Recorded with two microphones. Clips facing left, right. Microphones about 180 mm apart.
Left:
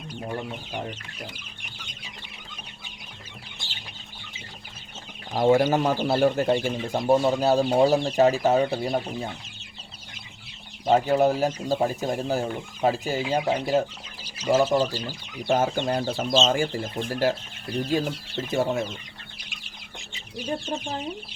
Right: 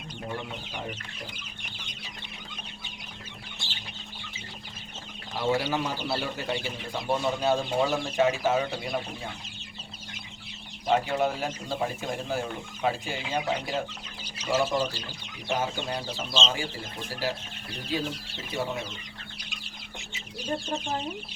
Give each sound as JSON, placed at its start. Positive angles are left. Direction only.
{"t": 5.3, "sound": "speech", "side_deg": 45}
{"t": 10.8, "sound": "speech", "side_deg": 40}